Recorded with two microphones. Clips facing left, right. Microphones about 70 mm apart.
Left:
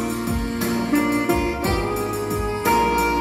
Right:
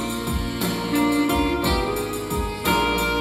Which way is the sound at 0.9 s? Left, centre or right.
Centre.